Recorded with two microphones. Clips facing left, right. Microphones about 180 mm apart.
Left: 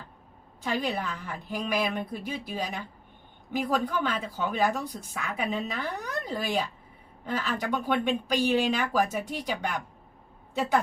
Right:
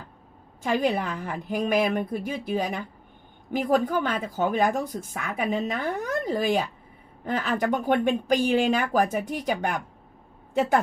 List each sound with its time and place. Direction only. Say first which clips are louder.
0.6 s a woman's voice: right 5 dB; 50° right (ahead or behind)